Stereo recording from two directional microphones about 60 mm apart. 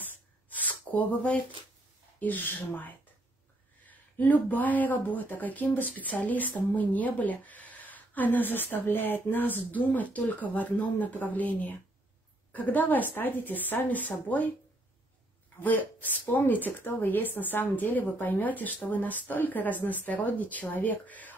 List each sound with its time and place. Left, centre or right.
0.0 s a sound: left
2.1 s speech: left
3.9 s speech: left
15.6 s speech: left